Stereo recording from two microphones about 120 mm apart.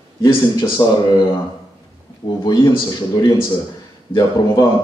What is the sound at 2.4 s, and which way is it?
A man's voice, 40° left (ahead or behind).